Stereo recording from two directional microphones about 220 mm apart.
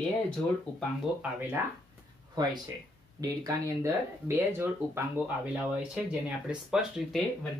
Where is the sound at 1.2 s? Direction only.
10° right (ahead or behind).